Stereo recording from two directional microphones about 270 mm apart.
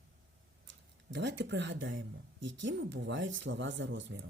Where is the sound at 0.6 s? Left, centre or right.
Right.